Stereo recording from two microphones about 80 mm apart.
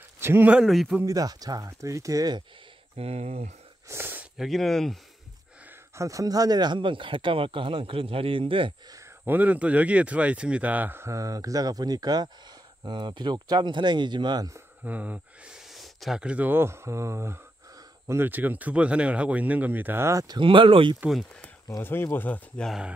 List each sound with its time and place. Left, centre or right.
0.2 s speech: right
0.7 s speech: centre
1.0 s speech: right
1.7 s speech: right
3.9 s a sound: right
4.4 s speech: centre
5.9 s speech: right
9.2 s speech: right
11.1 s speech: right
14.9 s speech: centre
15.5 s a sound: centre
16.2 s speech: centre
20.2 s speech: right
21.8 s speech: left